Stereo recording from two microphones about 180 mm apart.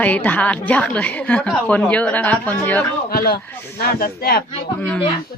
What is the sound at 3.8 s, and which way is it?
Speech, 55° left (ahead or behind).